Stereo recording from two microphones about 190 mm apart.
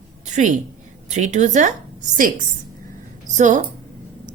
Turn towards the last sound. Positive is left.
turn(degrees=-40)  # may be behind; listen again after turning